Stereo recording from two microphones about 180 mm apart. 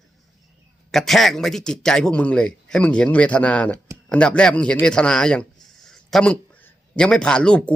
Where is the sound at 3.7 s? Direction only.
15° right (ahead or behind).